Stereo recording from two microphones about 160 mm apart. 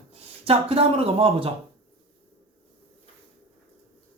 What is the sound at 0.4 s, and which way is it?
Speech, 35° right (ahead or behind).